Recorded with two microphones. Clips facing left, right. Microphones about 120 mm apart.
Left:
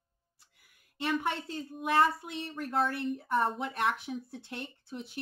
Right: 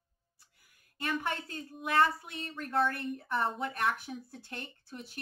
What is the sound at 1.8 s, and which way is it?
Speech, 25° left (ahead or behind).